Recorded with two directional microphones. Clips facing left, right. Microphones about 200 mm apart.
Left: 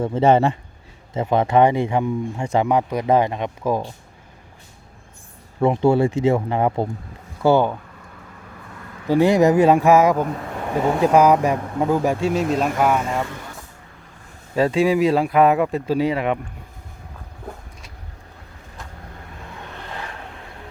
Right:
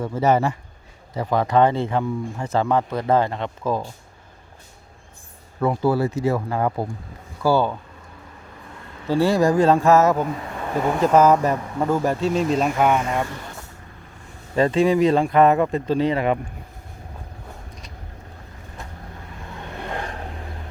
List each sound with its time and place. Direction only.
0.0 s speech: 25° left (ahead or behind)
5.5 s speech: 25° left (ahead or behind)
9.0 s speech: 15° left (ahead or behind); by 13.2 s centre (ahead or behind)
14.5 s speech: 5° left (ahead or behind)